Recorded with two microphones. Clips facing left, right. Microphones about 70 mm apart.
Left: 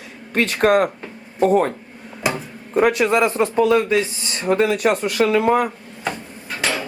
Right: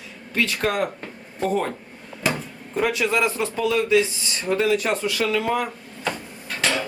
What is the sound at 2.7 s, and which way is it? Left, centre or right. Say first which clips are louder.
Speech: left 6 dB; left.